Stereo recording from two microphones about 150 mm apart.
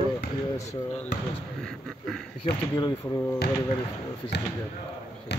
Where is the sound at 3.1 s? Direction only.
10° left (ahead or behind).